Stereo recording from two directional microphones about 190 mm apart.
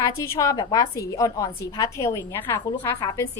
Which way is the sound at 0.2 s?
15° left (ahead or behind).